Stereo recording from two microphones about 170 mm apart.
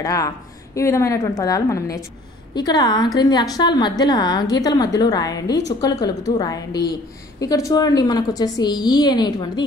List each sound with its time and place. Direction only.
0.0 s a woman's voice: 20° left (ahead or behind)